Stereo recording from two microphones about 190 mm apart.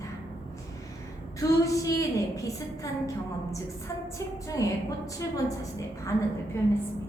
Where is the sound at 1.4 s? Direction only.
15° left (ahead or behind).